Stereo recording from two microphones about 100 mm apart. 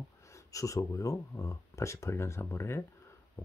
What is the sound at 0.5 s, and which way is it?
Speech, 35° left (ahead or behind).